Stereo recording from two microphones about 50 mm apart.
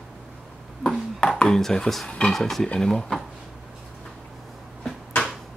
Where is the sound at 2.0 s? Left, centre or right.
Centre.